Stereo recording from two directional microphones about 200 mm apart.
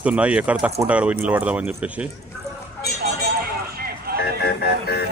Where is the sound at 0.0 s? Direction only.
5° right (ahead or behind).